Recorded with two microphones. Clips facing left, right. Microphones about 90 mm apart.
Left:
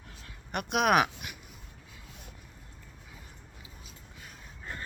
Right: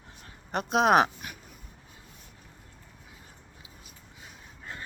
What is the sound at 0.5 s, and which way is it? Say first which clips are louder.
Speech: right 3 dB; 30° right (ahead or behind).